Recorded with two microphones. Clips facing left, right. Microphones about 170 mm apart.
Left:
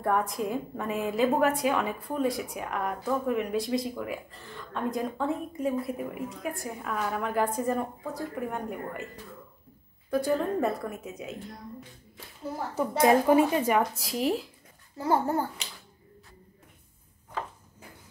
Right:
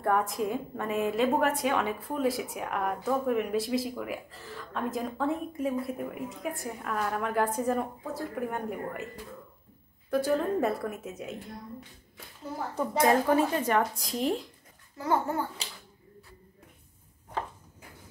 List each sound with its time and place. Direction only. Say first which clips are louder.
0.0 s a woman's voice: even; centre (ahead or behind)
10.1 s a woman's voice: even; centre (ahead or behind)
13.0 s speech: left 3 dB; 15° left (ahead or behind)
15.0 s a child's voice: left 2 dB; 35° left (ahead or behind)